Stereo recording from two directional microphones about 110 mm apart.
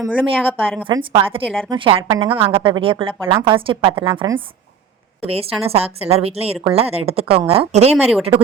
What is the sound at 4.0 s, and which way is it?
Speech, 40° right (ahead or behind).